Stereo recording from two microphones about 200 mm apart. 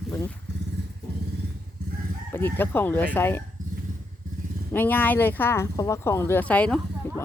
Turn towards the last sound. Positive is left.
turn(degrees=5)  # may be behind; listen again after turning